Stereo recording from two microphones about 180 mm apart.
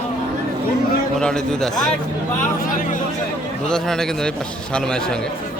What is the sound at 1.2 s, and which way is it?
Speech, 5° left (ahead or behind).